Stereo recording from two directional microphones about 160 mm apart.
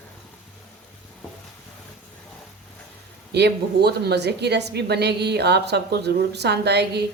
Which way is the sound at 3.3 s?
90° right.